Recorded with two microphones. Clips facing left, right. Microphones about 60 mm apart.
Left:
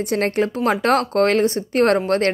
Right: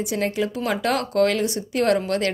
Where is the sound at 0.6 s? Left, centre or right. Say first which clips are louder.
Left 6 dB; left.